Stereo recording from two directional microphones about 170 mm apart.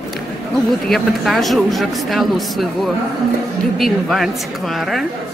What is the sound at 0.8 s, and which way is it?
A man's voice, centre (ahead or behind).